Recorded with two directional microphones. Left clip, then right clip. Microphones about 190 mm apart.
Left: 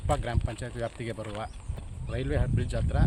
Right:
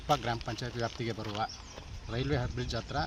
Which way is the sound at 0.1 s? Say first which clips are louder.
Even; 25° left (ahead or behind).